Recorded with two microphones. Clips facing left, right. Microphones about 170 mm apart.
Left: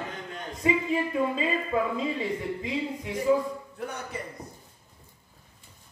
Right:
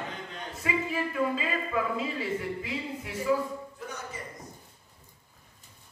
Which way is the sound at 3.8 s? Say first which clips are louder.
Left 5 dB; 60° left (ahead or behind).